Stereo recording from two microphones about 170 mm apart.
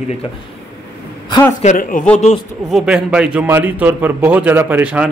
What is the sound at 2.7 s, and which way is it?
A man's voice, centre (ahead or behind).